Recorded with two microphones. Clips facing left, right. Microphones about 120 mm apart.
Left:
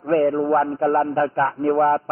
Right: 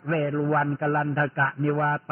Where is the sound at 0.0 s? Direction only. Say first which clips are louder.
Left 7 dB; 35° left (ahead or behind).